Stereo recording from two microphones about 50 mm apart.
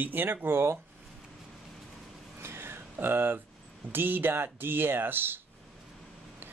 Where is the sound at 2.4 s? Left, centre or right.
Right.